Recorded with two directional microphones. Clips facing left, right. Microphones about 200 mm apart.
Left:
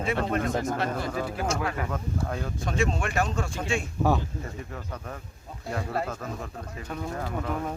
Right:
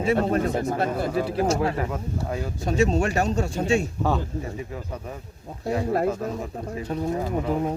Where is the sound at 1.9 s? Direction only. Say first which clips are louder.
Right 2 dB; 10° right (ahead or behind).